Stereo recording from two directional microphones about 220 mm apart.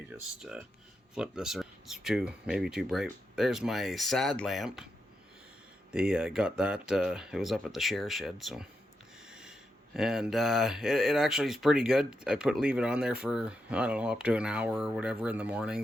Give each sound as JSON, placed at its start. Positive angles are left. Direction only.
{"t": 0.1, "sound": "speech", "side_deg": -5}
{"t": 5.9, "sound": "speech", "side_deg": -5}